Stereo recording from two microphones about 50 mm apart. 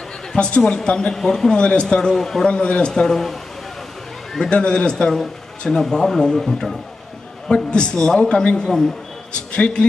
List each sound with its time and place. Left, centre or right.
0.3 s speech: centre
1.6 s speech: centre
2.5 s speech: left
4.5 s a man's voice: left
5.8 s a man's voice: centre